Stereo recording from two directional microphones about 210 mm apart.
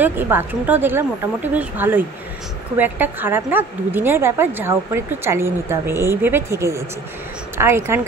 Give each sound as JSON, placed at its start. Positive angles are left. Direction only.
{"t": 0.0, "sound": "speech", "side_deg": -10}